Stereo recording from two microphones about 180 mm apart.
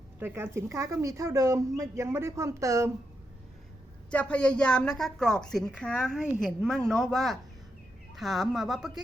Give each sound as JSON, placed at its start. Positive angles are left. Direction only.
{"t": 0.2, "sound": "a woman's voice", "side_deg": -10}
{"t": 4.1, "sound": "a woman's voice", "side_deg": 5}